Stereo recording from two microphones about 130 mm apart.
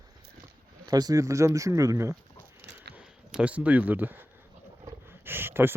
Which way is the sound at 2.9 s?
10° right (ahead or behind).